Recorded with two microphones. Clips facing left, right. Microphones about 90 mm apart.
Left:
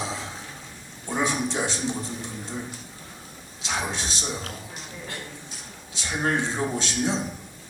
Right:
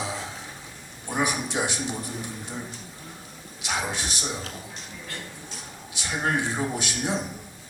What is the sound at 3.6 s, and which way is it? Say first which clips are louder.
Speech: even; 15° right (ahead or behind).